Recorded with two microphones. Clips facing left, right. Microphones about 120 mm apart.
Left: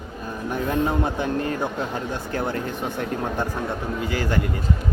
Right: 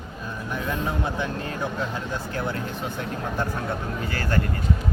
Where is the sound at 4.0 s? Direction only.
15° left (ahead or behind).